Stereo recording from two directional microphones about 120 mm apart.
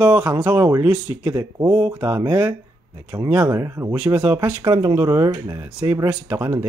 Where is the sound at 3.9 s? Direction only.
15° right (ahead or behind).